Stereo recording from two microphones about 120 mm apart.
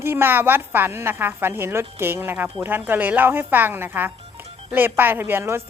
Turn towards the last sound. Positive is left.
turn(degrees=-20)  # may be behind; listen again after turning